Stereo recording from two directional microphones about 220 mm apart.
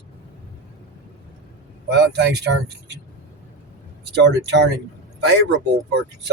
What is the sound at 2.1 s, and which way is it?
Speech, 50° right (ahead or behind).